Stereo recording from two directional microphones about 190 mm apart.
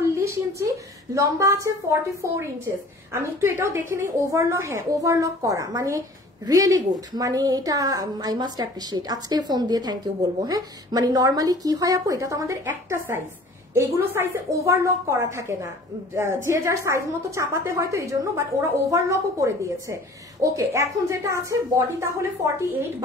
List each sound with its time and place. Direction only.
0.0 s a woman's voice: 15° right (ahead or behind)